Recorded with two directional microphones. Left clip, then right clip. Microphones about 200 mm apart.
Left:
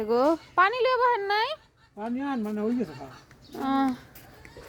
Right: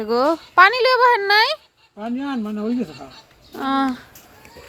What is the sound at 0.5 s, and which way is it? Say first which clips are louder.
Speech: right 12 dB; 15° right (ahead or behind).